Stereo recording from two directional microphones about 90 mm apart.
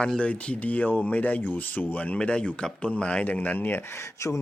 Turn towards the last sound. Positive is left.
turn(degrees=30)  # may be behind; listen again after turning